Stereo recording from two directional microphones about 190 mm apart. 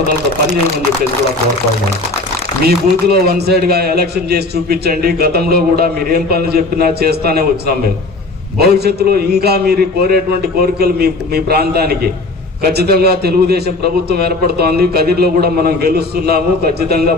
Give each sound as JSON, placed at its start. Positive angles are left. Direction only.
{"t": 2.6, "sound": "a man's voice", "side_deg": -55}